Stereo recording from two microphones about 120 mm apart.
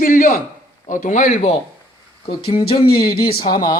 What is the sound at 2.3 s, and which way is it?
Speech, 50° left (ahead or behind).